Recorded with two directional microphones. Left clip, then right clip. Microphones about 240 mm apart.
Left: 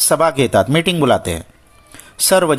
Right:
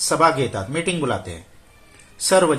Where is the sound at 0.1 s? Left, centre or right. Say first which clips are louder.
Left 4 dB; left.